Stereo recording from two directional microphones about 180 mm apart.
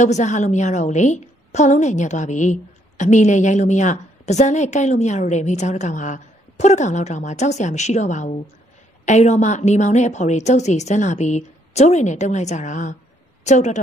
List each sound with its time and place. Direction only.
0.0 s a woman's voice: 40° left (ahead or behind)